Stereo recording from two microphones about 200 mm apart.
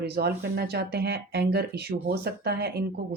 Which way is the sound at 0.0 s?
50° right (ahead or behind).